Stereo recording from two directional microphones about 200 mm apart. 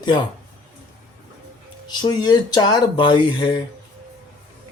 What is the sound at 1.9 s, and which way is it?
Speech, 20° left (ahead or behind).